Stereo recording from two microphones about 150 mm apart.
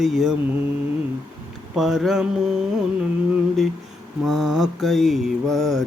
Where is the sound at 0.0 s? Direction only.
Centre (ahead or behind).